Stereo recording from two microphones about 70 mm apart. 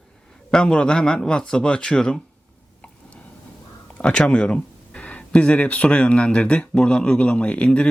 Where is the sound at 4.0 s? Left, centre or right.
Centre.